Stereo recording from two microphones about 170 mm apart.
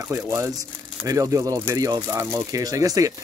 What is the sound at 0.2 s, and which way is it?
Speech, 15° right (ahead or behind).